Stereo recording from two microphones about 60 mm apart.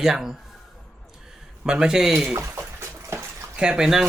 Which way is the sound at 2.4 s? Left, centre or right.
Right.